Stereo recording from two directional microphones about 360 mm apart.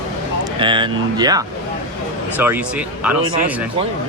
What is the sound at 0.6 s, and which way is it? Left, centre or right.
Speech, centre.